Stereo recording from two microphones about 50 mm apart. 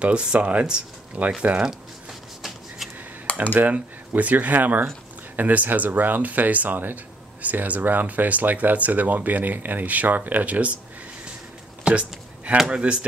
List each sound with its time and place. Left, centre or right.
0.0 s speech: centre
3.5 s speech: right
11.8 s a sound: right
12.5 s speech: centre